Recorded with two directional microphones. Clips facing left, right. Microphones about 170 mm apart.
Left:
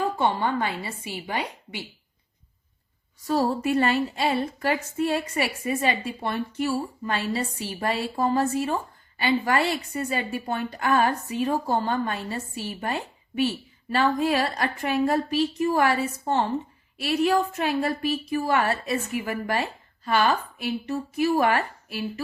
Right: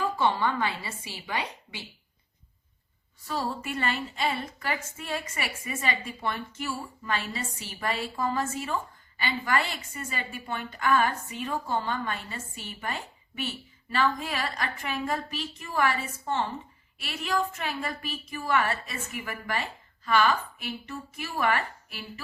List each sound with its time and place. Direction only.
0.3 s a woman's voice: 35° left (ahead or behind)
3.2 s a woman's voice: 40° left (ahead or behind)